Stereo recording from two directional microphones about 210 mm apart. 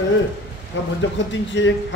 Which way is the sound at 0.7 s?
60° left (ahead or behind).